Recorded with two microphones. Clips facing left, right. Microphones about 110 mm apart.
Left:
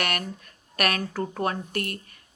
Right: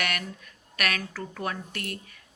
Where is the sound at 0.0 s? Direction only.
55° left (ahead or behind).